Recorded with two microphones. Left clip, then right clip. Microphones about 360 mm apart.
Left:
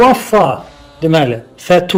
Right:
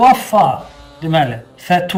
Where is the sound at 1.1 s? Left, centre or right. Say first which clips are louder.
Left 1 dB; left.